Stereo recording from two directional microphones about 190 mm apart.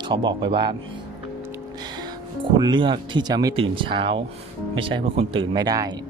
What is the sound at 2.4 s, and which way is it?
Speech, 25° right (ahead or behind).